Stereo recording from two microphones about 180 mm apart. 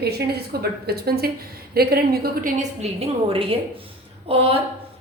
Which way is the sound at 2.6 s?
30° right (ahead or behind).